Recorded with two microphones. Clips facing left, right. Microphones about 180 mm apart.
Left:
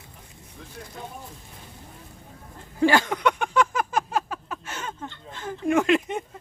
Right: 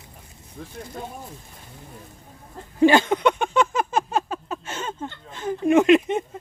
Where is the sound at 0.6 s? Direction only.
45° right (ahead or behind).